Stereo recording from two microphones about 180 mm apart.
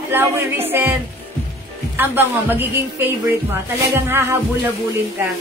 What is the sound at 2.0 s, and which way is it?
A woman's voice, 10° right (ahead or behind).